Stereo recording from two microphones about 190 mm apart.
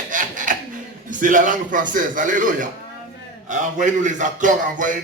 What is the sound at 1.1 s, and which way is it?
A man's voice, 45° right (ahead or behind).